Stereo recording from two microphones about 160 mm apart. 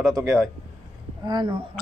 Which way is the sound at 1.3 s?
25° right (ahead or behind).